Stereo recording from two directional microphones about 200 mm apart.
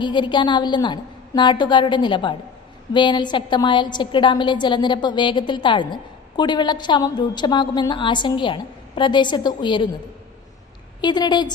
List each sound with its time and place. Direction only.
0.0 s a woman's voice: 25° left (ahead or behind)
11.0 s a woman's voice: 20° left (ahead or behind)